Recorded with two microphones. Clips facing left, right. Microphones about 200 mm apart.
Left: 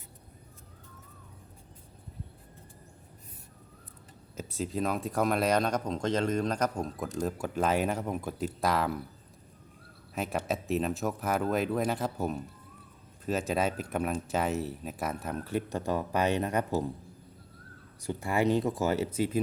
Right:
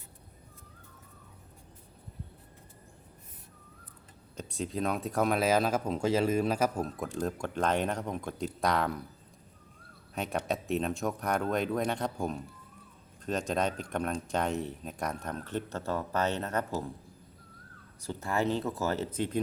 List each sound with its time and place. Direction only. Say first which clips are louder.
4.4 s speech: left 1 dB; 5° left (ahead or behind)
10.2 s speech: left 1 dB; centre (ahead or behind)
18.0 s speech: left 3 dB; 15° left (ahead or behind)